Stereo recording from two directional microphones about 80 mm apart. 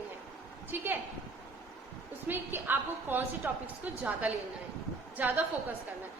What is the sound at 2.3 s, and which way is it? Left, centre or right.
A woman's voice, right.